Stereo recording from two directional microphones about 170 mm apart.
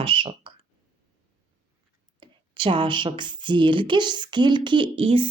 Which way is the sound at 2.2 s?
30° right (ahead or behind).